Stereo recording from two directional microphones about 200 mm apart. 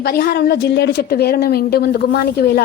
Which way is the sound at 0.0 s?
50° left (ahead or behind).